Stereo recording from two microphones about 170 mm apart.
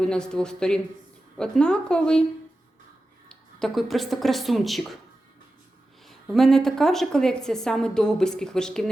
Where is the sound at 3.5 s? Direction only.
Centre (ahead or behind).